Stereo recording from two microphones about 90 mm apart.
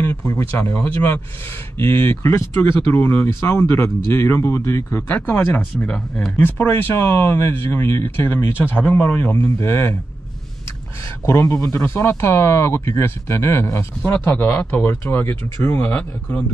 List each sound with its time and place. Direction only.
0.2 s speech: 35° left (ahead or behind)
1.8 s speech: 25° left (ahead or behind); by 6.3 s 10° left (ahead or behind)
6.3 s speech: 20° left (ahead or behind)
11.2 s speech: 30° left (ahead or behind)